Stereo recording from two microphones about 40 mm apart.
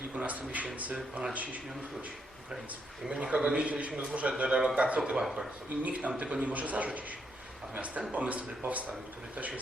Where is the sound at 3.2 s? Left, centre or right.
Right.